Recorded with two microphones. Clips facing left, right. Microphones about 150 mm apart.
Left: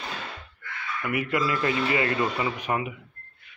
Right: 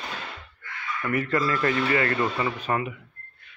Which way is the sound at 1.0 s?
10° left (ahead or behind).